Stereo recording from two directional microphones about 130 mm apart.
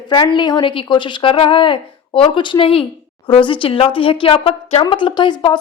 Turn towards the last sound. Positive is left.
turn(degrees=35)  # may be behind; listen again after turning